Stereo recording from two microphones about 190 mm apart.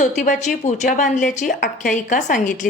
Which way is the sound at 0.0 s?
40° left (ahead or behind).